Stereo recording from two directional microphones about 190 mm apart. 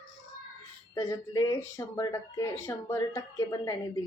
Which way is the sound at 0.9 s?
15° left (ahead or behind).